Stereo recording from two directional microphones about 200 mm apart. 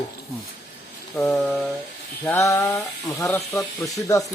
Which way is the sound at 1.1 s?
5° left (ahead or behind).